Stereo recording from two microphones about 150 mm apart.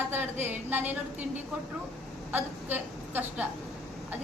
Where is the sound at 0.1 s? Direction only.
15° right (ahead or behind).